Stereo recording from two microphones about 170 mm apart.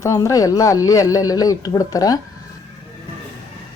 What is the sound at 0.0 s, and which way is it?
Speech, 15° left (ahead or behind).